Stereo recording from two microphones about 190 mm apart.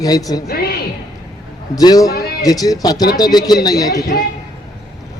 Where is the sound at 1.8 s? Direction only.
20° left (ahead or behind).